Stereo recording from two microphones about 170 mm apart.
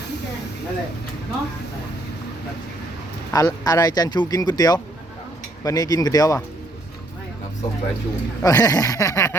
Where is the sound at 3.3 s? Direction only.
20° left (ahead or behind).